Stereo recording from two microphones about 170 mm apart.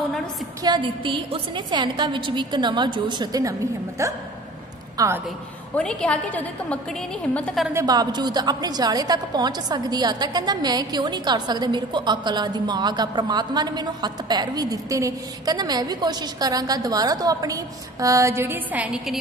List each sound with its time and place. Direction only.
0.7 s a woman's voice: 30° right (ahead or behind)
4.0 s music: 15° right (ahead or behind)
4.9 s a man's voice: 15° right (ahead or behind)
5.8 s a woman's voice: 5° left (ahead or behind)
7.7 s a woman's voice: 25° right (ahead or behind)
18.0 s music: 20° right (ahead or behind)